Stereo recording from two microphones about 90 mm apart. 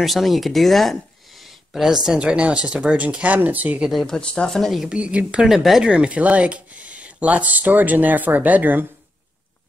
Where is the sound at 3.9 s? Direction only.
5° left (ahead or behind).